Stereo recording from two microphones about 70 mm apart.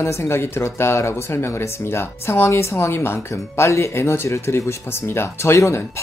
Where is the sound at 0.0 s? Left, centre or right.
Left.